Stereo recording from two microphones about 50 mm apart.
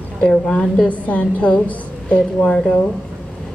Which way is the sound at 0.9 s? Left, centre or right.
Left.